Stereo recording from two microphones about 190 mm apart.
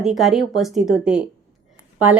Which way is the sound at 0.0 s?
Centre (ahead or behind).